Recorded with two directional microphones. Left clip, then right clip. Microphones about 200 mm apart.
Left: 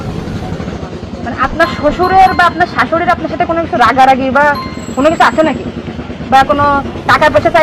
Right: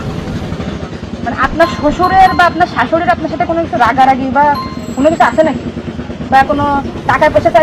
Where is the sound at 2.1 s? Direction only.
25° left (ahead or behind).